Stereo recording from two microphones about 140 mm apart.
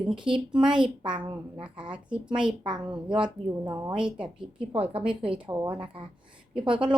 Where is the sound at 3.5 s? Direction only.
25° right (ahead or behind).